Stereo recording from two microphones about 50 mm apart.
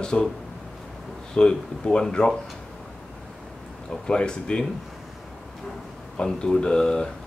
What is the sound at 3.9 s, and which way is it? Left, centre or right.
Speech, centre.